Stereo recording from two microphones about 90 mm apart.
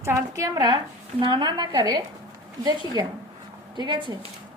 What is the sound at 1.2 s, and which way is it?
Speech, 55° right (ahead or behind).